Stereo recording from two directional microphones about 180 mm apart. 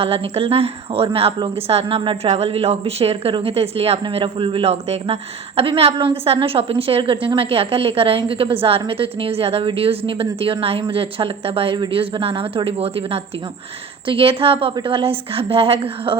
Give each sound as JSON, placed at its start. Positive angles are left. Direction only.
{"t": 0.0, "sound": "a woman's voice", "side_deg": -30}